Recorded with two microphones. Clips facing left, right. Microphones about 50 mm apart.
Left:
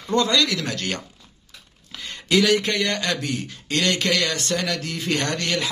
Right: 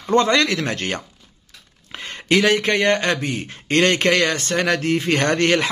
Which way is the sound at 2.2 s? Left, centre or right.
Right.